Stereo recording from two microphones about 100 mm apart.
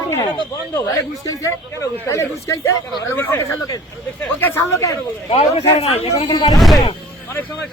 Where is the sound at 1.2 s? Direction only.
30° left (ahead or behind).